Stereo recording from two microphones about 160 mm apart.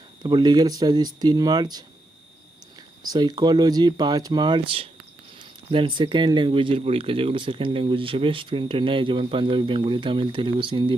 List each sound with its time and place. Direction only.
0.2 s speech: 25° right (ahead or behind)
3.0 s speech: 25° right (ahead or behind)